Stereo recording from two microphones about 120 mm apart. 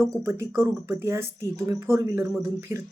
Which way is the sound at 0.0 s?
25° right (ahead or behind).